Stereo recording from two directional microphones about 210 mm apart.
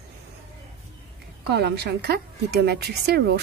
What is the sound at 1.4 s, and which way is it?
A woman's voice, 50° right (ahead or behind).